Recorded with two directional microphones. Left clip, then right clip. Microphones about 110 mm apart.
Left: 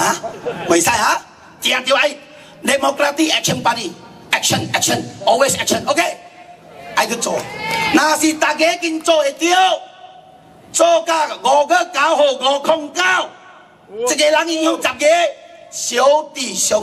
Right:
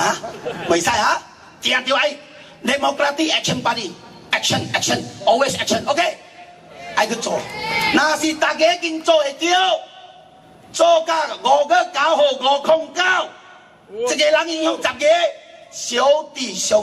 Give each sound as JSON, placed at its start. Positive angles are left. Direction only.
{"t": 0.7, "sound": "a woman's voice", "side_deg": 30}
{"t": 2.6, "sound": "music", "side_deg": 30}
{"t": 6.9, "sound": "a man's voice", "side_deg": 30}
{"t": 7.5, "sound": "speech", "side_deg": -50}
{"t": 7.9, "sound": "music", "side_deg": 30}